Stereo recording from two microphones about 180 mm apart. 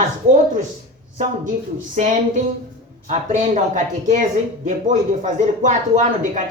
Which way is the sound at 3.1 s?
40° right (ahead or behind).